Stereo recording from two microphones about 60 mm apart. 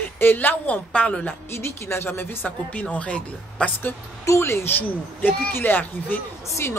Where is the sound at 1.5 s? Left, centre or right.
Left.